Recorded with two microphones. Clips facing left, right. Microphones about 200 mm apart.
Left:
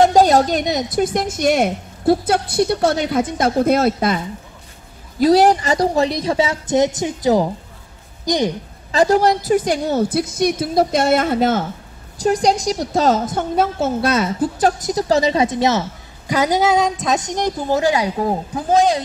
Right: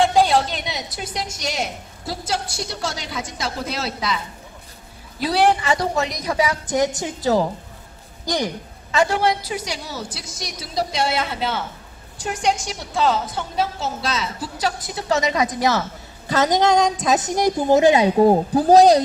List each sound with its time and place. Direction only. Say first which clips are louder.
0.0 s a woman's voice: left 5 dB; 45° left (ahead or behind)
5.2 s speech: left 6 dB; 40° left (ahead or behind); by 7.4 s 15° left (ahead or behind)
8.9 s a woman's voice: left 5 dB; 40° left (ahead or behind)
16.3 s a woman's voice: left 1 dB; 10° left (ahead or behind); by 19.0 s 40° right (ahead or behind)